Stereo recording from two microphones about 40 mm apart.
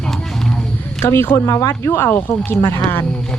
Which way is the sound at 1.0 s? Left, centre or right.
Left.